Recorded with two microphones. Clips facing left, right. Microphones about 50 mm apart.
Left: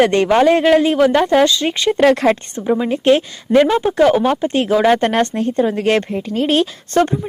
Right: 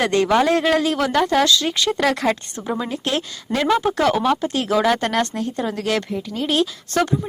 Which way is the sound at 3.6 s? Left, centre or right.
Centre.